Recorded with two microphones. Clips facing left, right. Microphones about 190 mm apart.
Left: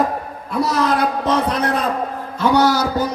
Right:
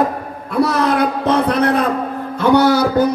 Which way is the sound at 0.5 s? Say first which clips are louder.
Right 3 dB; 55° right (ahead or behind).